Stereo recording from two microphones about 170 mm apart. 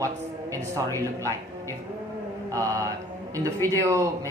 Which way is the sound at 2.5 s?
20° right (ahead or behind).